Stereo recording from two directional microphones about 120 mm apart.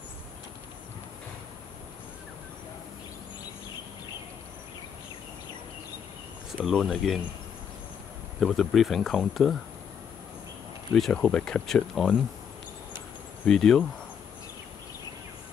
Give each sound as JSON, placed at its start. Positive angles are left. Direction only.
{"t": 6.6, "sound": "speech", "side_deg": 0}
{"t": 8.4, "sound": "speech", "side_deg": 0}
{"t": 11.0, "sound": "speech", "side_deg": 5}
{"t": 13.5, "sound": "speech", "side_deg": 5}